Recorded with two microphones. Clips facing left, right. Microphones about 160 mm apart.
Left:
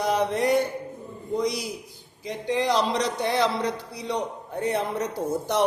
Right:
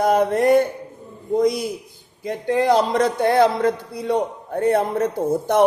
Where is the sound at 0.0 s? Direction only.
50° right (ahead or behind).